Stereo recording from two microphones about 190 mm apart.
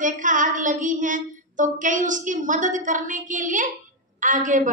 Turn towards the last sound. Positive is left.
turn(degrees=-40)  # may be behind; listen again after turning